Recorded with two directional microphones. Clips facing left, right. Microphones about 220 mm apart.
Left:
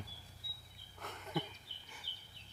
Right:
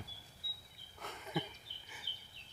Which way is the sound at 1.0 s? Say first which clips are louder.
Even; centre (ahead or behind).